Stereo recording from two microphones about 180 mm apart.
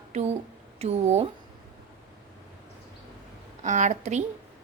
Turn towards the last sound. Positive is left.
turn(degrees=-40)  # may be behind; listen again after turning